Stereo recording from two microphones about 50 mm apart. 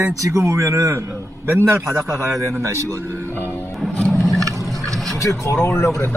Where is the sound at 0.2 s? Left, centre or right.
Right.